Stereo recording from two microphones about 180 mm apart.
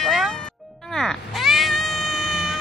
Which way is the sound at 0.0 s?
Centre (ahead or behind).